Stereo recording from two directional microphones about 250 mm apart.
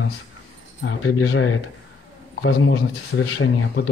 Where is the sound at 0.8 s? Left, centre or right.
Left.